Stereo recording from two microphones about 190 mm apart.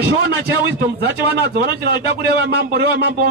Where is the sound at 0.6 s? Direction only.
60° right (ahead or behind).